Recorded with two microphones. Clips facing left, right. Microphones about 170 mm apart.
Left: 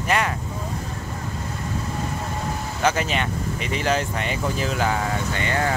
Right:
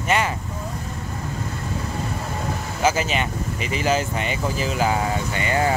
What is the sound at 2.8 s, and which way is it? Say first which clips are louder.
Speech: right 1 dB; 5° right (ahead or behind).